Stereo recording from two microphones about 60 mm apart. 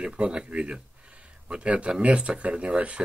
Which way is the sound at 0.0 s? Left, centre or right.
Centre.